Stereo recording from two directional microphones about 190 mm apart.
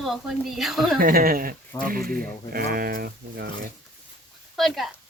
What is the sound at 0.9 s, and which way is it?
Speech, 50° right (ahead or behind).